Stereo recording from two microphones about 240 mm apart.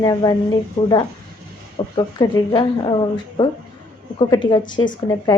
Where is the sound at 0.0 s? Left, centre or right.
Centre.